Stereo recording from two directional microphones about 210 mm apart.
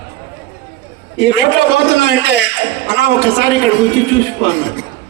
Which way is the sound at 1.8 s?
50° right (ahead or behind).